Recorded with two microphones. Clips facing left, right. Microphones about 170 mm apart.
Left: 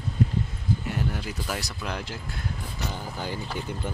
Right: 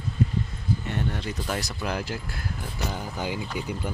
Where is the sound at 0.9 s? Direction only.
5° left (ahead or behind).